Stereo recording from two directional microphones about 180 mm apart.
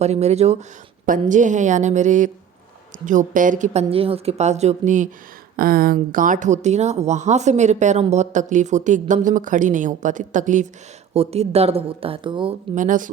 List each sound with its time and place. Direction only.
0.0 s a woman's voice: 35° right (ahead or behind)
5.5 s a woman's voice: 55° right (ahead or behind); by 12.5 s 30° right (ahead or behind)
12.7 s speech: 45° right (ahead or behind)